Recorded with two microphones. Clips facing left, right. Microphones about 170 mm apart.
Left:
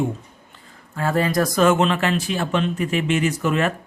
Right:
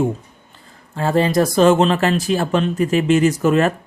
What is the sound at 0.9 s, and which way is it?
Speech, 25° right (ahead or behind).